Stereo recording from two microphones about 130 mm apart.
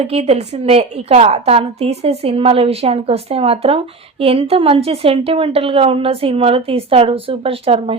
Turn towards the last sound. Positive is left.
turn(degrees=-45)  # may be behind; listen again after turning